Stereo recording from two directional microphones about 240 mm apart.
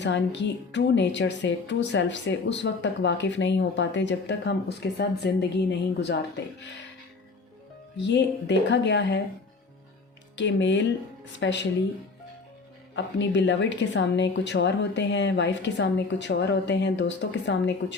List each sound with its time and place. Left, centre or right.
0.0 s a woman's voice: left
7.9 s a woman's voice: left
10.3 s a woman's voice: left
13.1 s a woman's voice: left